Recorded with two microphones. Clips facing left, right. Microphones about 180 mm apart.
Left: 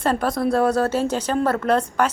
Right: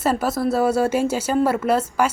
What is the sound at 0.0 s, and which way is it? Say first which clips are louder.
A woman's voice: even; 5° right (ahead or behind).